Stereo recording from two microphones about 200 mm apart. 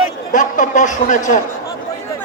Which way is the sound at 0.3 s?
40° left (ahead or behind).